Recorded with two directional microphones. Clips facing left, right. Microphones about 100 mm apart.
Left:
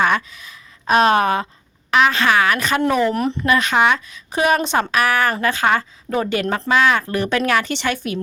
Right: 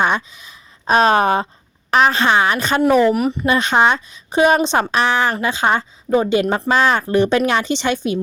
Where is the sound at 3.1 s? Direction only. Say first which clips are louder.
Right 3 dB; 10° right (ahead or behind).